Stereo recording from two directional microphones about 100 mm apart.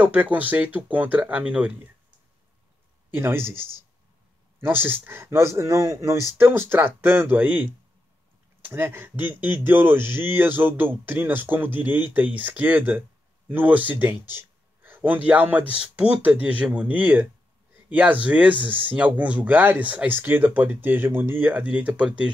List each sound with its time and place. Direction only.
0.0 s speech: 15° right (ahead or behind)
3.2 s speech: 25° right (ahead or behind)
18.6 s speech: 60° right (ahead or behind)
18.9 s speech: 15° right (ahead or behind)